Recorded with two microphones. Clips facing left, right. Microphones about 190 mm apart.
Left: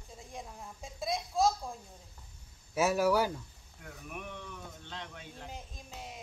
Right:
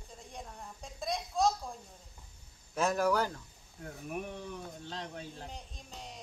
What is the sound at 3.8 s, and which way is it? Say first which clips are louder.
Speech: right 5 dB; 35° right (ahead or behind).